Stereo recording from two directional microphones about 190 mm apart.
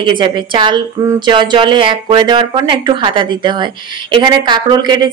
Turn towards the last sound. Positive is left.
turn(degrees=-20)  # may be behind; listen again after turning